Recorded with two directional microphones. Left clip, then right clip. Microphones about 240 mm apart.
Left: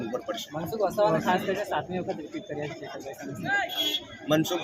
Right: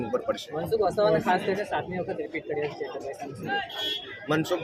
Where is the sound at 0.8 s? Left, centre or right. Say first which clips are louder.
Even; left.